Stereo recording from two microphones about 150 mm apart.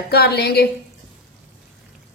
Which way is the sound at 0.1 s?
90° left.